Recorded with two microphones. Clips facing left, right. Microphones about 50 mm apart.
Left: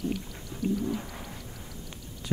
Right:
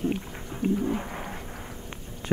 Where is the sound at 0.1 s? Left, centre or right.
Right.